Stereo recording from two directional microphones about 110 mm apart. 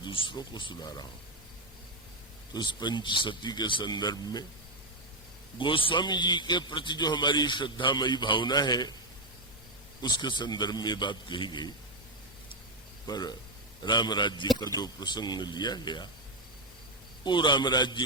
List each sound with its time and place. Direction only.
0.0 s a man's voice: 50° left (ahead or behind)
2.5 s a man's voice: 45° left (ahead or behind)
5.5 s a man's voice: 50° left (ahead or behind)
10.0 s a man's voice: 40° left (ahead or behind)
13.1 s a man's voice: 40° left (ahead or behind)
17.2 s a man's voice: 45° left (ahead or behind)